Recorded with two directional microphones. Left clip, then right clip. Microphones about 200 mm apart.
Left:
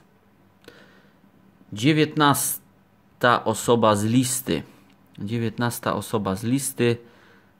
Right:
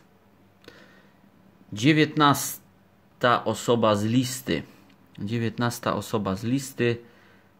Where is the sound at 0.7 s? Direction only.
5° left (ahead or behind).